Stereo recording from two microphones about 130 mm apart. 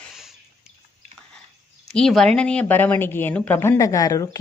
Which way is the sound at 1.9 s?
5° left (ahead or behind).